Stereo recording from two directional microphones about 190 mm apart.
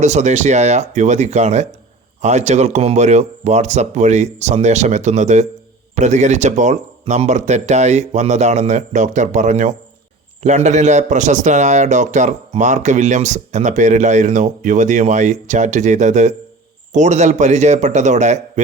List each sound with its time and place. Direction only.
0.0 s a man's voice: 40° right (ahead or behind)